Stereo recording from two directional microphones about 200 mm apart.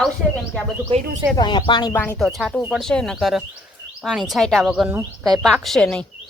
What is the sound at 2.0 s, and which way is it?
Speech, 5° left (ahead or behind).